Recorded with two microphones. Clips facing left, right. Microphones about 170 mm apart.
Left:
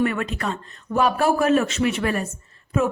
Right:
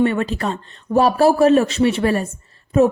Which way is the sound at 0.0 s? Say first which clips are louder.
Right 5 dB; 30° right (ahead or behind).